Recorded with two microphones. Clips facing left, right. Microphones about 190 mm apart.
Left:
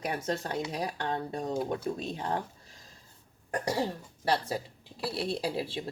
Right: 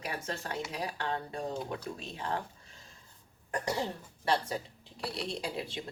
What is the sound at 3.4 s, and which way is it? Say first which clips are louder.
Cough: left 3 dB; 35° left (ahead or behind).